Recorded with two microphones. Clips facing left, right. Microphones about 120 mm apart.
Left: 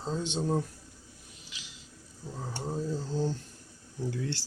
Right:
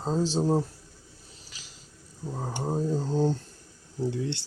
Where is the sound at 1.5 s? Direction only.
40° right (ahead or behind).